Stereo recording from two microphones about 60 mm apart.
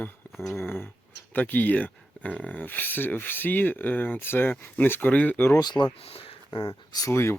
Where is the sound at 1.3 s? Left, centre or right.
Left.